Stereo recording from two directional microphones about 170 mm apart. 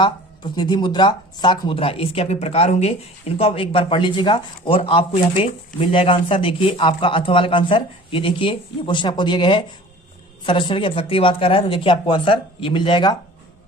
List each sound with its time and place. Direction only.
0.0 s a man's voice: 25° left (ahead or behind)